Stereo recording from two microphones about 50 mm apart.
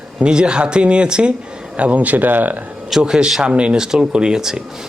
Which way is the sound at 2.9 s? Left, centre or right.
Centre.